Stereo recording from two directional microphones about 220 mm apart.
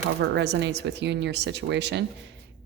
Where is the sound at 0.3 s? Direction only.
50° right (ahead or behind).